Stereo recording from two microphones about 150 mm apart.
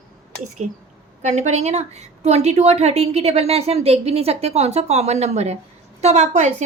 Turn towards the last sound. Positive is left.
turn(degrees=-50)  # may be behind; listen again after turning